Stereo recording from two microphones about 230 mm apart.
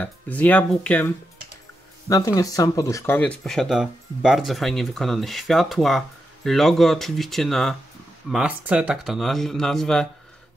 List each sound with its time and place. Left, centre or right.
0.0 s speech: centre